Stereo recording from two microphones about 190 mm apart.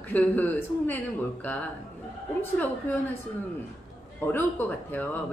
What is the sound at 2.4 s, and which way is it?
Speech, 10° left (ahead or behind).